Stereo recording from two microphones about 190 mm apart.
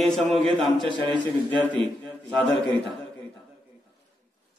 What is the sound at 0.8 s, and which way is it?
Speech, 25° right (ahead or behind).